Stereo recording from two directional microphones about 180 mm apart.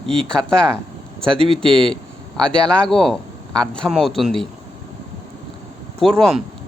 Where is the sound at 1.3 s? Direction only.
30° right (ahead or behind).